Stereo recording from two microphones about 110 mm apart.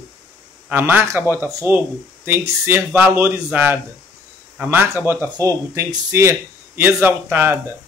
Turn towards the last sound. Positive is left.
turn(degrees=-20)  # may be behind; listen again after turning